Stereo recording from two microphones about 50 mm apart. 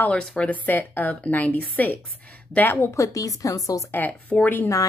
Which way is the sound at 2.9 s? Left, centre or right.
Left.